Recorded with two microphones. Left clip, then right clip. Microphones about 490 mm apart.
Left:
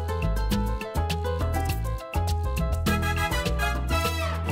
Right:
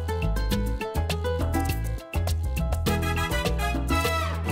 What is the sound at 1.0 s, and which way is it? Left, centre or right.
Music, right.